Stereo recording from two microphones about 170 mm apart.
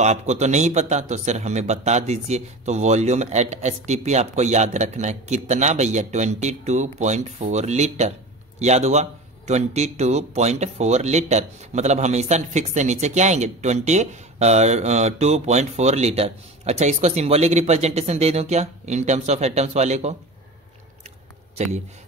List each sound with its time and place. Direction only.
0.0 s speech: 40° right (ahead or behind)